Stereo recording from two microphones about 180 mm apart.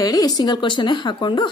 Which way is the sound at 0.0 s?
20° left (ahead or behind).